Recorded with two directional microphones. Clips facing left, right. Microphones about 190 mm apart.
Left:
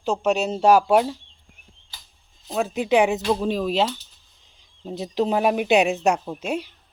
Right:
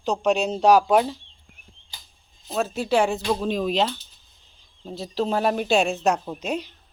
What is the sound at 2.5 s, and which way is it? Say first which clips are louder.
Speech: left 2 dB; 15° left (ahead or behind).